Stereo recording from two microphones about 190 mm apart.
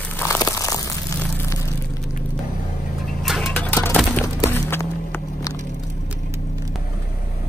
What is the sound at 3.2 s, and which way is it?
Music, centre (ahead or behind).